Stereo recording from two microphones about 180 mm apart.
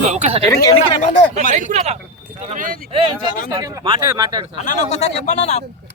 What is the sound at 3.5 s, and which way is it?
Speech, 20° right (ahead or behind).